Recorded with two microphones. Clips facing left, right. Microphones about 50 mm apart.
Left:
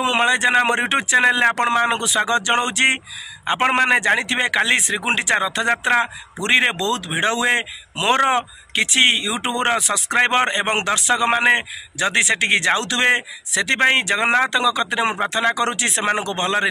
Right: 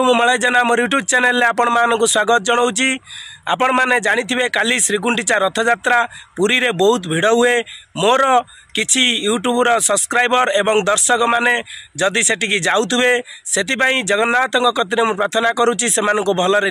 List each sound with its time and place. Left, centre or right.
0.0 s a man's voice: left